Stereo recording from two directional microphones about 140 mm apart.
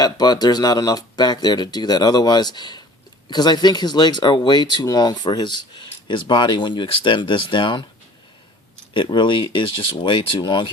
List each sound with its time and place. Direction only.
0.0 s speech: 30° left (ahead or behind)
8.9 s speech: 35° left (ahead or behind)